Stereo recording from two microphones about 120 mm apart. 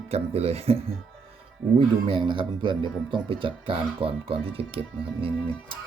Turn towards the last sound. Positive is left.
turn(degrees=-50)  # may be behind; listen again after turning